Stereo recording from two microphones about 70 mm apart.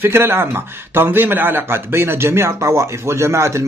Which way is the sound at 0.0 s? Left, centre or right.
Right.